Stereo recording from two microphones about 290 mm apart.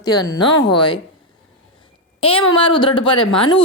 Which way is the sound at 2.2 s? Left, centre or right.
Centre.